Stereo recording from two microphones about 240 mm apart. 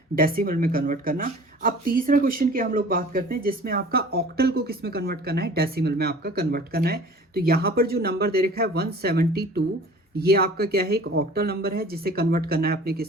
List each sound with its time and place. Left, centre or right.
0.2 s speech: right